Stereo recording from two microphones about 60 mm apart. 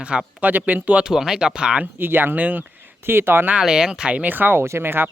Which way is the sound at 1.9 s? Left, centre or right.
Right.